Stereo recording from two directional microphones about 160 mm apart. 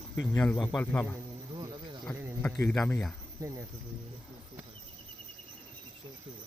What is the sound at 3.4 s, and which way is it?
Speech, 20° right (ahead or behind).